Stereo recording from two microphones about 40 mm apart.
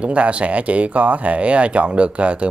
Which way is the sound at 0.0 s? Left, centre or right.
Right.